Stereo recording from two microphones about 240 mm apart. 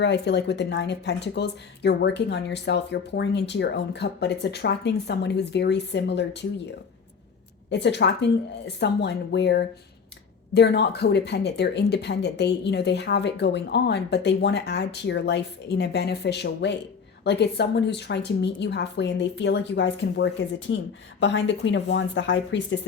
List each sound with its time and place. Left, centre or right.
0.0 s a woman's voice: left
7.7 s a woman's voice: left